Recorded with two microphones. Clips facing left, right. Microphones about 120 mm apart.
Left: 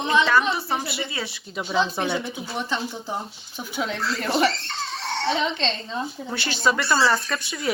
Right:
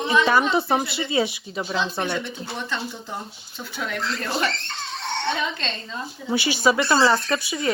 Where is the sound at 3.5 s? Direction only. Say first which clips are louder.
Left 2 dB; 15° left (ahead or behind).